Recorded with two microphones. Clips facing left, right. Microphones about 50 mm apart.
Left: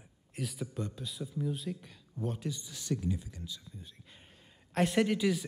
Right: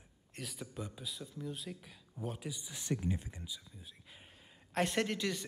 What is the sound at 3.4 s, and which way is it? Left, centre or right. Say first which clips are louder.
Speech: left 3 dB; centre.